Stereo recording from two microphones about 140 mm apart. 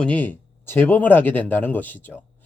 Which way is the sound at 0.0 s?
10° left (ahead or behind).